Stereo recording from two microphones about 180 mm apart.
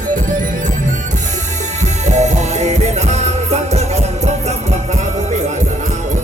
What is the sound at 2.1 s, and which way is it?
Music, 40° right (ahead or behind).